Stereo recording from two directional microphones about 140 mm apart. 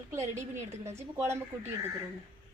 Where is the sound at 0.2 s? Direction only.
55° right (ahead or behind).